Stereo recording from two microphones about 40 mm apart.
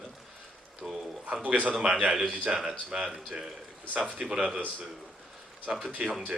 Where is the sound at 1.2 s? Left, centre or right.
Right.